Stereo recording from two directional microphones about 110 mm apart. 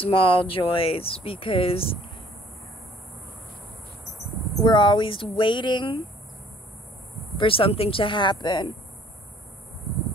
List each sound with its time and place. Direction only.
0.0 s speech: 55° left (ahead or behind)
4.6 s speech: 45° left (ahead or behind)
7.3 s speech: 55° left (ahead or behind)